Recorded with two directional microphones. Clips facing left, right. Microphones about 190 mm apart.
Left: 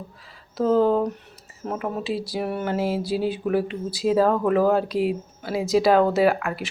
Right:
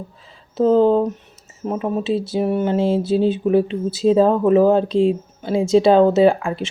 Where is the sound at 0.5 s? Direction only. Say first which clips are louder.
Right 5 dB; 20° right (ahead or behind).